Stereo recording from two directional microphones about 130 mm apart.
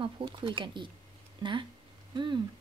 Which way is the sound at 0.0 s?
35° right (ahead or behind).